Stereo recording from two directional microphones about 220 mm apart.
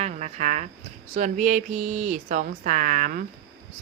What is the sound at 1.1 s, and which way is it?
Speech, 35° right (ahead or behind).